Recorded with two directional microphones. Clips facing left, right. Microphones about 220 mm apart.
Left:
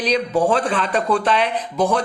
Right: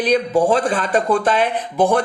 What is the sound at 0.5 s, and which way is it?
Speech, 45° right (ahead or behind).